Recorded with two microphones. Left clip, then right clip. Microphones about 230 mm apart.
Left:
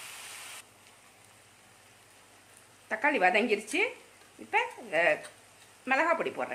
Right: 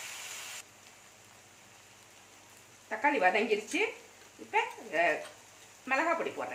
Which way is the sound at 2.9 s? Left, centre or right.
Left.